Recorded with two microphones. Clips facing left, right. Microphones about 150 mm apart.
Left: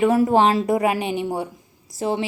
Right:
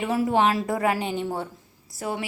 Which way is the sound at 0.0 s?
50° left (ahead or behind).